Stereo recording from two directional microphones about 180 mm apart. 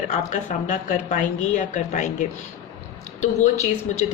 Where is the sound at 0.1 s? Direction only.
40° left (ahead or behind).